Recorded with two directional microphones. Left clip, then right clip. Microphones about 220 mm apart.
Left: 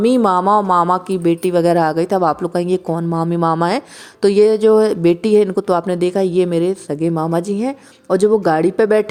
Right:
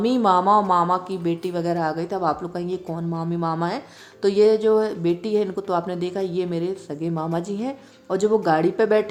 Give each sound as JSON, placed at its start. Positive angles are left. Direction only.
{"t": 0.0, "sound": "speech", "side_deg": 30}